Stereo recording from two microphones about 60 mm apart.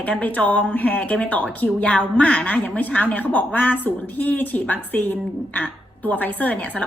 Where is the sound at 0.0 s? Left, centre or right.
Left.